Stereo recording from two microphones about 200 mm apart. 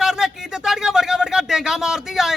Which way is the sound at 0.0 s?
Centre (ahead or behind).